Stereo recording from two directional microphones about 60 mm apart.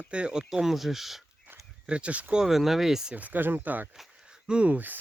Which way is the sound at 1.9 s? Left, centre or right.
Right.